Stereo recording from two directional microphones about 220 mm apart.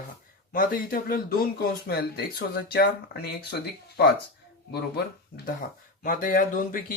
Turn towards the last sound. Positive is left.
turn(degrees=40)  # may be behind; listen again after turning